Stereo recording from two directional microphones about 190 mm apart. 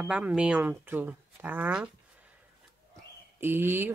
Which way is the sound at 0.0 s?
5° right (ahead or behind).